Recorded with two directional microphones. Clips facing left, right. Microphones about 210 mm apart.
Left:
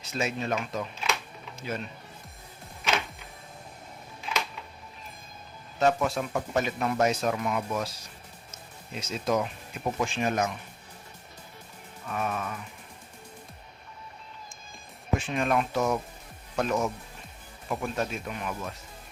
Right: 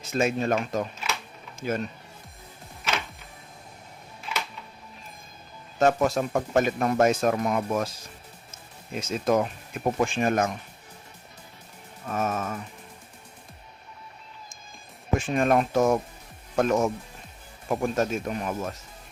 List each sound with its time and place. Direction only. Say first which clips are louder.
0.0 s speech: right 6 dB; 50° right (ahead or behind)
5.8 s speech: right 3 dB; 45° right (ahead or behind)
8.9 s speech: right 4 dB; 50° right (ahead or behind)
12.0 s speech: right 4 dB; 45° right (ahead or behind)
15.2 s speech: right 6 dB; 45° right (ahead or behind)